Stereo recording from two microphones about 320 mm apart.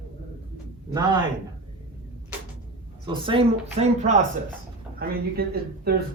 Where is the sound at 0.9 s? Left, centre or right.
Centre.